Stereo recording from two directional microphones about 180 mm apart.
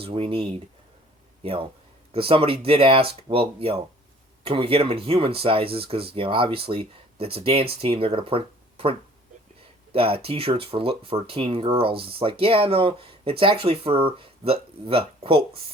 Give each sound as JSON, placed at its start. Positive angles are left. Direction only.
{"t": 0.0, "sound": "speech", "side_deg": -30}
{"t": 2.1, "sound": "speech", "side_deg": -30}